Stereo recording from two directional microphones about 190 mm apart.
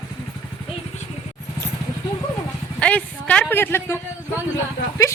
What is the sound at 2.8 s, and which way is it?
Speech, 5° left (ahead or behind).